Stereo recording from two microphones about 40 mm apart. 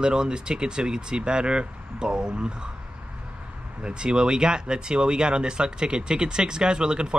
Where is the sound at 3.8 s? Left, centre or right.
Right.